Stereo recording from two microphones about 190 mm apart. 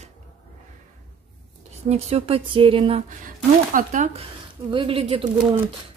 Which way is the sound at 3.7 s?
40° right (ahead or behind).